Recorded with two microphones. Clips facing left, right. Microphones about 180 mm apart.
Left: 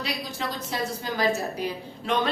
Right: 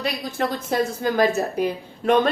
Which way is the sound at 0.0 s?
50° right (ahead or behind).